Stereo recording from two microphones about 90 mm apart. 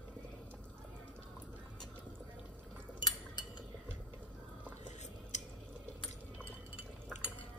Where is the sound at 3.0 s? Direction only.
55° left (ahead or behind).